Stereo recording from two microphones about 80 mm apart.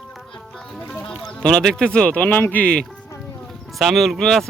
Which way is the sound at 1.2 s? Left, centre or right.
Centre.